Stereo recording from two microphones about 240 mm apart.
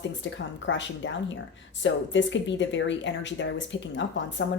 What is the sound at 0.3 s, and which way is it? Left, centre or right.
Speech, left.